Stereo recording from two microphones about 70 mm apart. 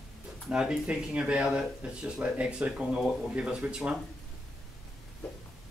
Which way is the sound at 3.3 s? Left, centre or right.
Centre.